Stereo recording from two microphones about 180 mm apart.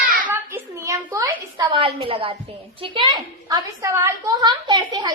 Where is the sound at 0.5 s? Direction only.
15° right (ahead or behind).